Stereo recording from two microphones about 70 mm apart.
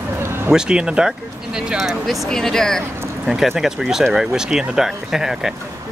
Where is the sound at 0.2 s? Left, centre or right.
Right.